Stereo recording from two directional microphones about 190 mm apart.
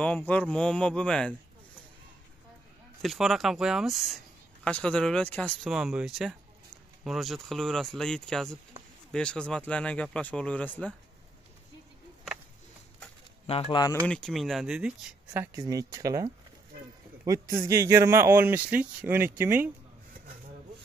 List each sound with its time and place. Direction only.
0.0 s speech: 5° left (ahead or behind)
3.0 s speech: centre (ahead or behind)
13.5 s speech: 30° left (ahead or behind)
14.0 s a man's voice: 5° left (ahead or behind)